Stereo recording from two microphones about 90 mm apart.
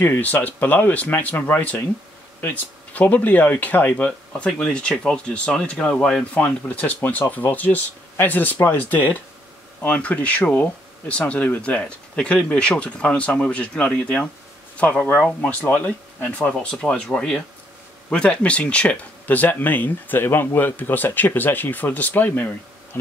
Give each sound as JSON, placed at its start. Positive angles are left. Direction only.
{"t": 0.0, "sound": "speech", "side_deg": 20}